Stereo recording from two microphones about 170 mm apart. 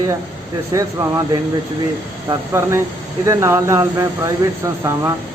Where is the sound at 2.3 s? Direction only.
15° right (ahead or behind).